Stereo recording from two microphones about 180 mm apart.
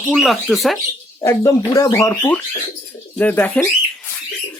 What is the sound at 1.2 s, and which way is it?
Speech, 20° left (ahead or behind).